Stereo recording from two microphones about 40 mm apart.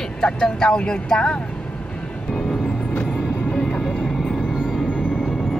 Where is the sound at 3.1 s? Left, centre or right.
Centre.